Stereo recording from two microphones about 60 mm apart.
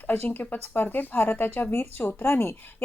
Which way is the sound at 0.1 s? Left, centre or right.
Left.